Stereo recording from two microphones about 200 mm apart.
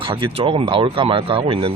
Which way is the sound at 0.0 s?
25° right (ahead or behind).